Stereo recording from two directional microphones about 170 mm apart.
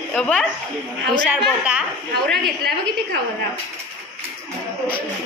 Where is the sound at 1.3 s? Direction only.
5° right (ahead or behind).